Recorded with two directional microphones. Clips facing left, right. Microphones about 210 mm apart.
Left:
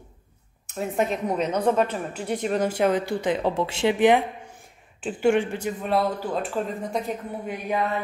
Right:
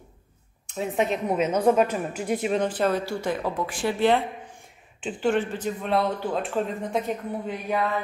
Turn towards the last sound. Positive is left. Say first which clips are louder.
# even
turn(degrees=15)  # may be behind; listen again after turning